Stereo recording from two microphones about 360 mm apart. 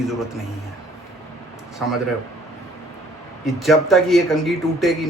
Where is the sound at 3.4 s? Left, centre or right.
Centre.